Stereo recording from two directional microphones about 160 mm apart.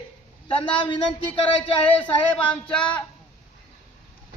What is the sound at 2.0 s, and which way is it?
Speech, 10° left (ahead or behind).